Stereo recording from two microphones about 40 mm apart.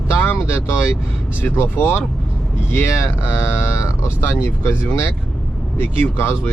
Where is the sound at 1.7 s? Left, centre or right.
Left.